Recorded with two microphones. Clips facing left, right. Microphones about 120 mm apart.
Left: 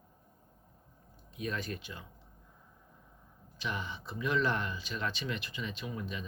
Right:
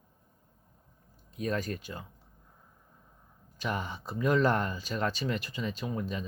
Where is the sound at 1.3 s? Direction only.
40° right (ahead or behind).